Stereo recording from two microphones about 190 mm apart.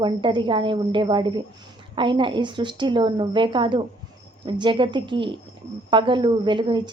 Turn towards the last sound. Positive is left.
turn(degrees=-25)  # may be behind; listen again after turning